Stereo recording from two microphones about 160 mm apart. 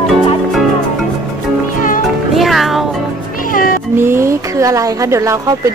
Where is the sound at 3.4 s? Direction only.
60° left (ahead or behind).